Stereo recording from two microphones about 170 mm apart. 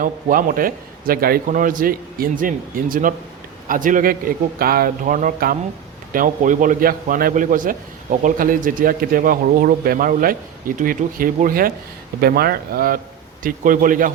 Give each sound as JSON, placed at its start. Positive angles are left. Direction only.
{"t": 0.0, "sound": "a man's voice", "side_deg": -55}